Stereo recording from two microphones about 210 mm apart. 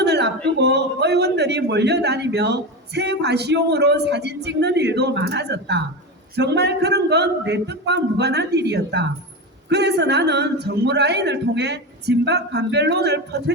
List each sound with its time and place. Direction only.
0.0 s a man's voice: 55° right (ahead or behind)